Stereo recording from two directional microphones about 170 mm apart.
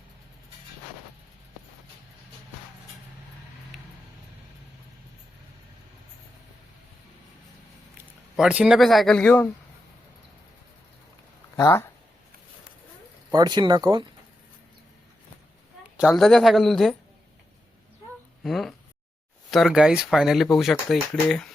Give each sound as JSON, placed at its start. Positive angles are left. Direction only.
{"t": 3.7, "sound": "vehicle", "side_deg": 0}
{"t": 8.4, "sound": "speech", "side_deg": -5}
{"t": 11.5, "sound": "speech", "side_deg": 20}
{"t": 13.3, "sound": "speech", "side_deg": -25}
{"t": 16.0, "sound": "speech", "side_deg": 0}
{"t": 18.4, "sound": "speech", "side_deg": 0}